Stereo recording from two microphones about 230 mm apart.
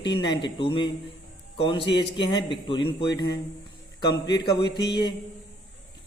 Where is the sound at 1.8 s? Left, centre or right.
Left.